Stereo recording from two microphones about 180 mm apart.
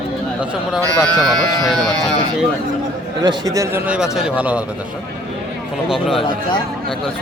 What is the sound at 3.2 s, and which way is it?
A man's voice, 20° right (ahead or behind).